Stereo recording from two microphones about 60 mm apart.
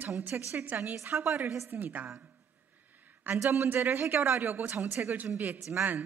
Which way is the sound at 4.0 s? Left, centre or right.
Right.